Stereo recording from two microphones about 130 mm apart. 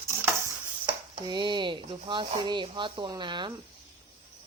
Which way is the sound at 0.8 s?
35° right (ahead or behind).